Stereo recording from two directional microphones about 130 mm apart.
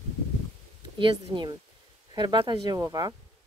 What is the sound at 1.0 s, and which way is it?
Speech, 40° right (ahead or behind).